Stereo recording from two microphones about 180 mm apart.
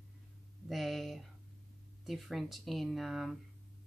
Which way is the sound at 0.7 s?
Centre (ahead or behind).